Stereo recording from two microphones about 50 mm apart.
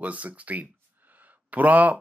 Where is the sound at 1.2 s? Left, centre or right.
Right.